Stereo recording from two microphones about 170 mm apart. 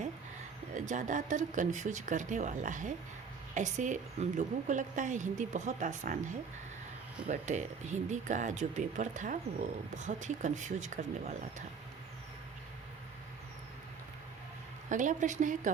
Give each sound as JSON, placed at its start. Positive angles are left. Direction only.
{"t": 0.7, "sound": "a woman's voice", "side_deg": -45}
{"t": 14.8, "sound": "a woman's voice", "side_deg": -45}